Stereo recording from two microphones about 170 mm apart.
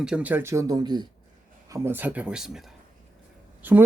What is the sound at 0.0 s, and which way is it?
Speech, 5° right (ahead or behind).